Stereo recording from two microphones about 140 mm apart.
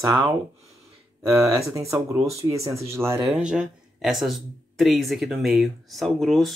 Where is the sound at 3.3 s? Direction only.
5° right (ahead or behind).